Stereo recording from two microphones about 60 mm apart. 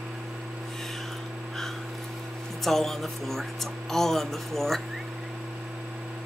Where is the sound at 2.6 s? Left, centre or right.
Centre.